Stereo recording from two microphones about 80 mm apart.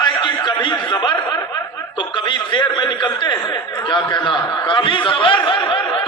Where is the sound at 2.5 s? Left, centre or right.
Left.